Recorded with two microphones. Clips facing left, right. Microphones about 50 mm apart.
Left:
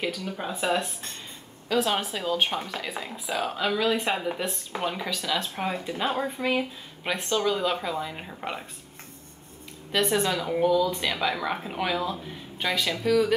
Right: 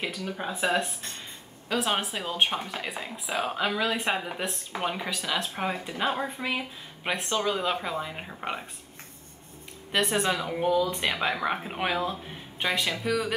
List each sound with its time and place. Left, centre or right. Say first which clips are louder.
0.2 s speech: even; centre
0.6 s speech: even; right; by 6.6 s centre
7.2 s speech: left 3 dB; centre
10.1 s speech: left 1 dB; centre
10.7 s speech: left 1 dB; right